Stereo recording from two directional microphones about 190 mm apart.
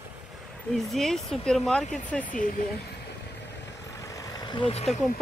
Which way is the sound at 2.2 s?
45° left (ahead or behind).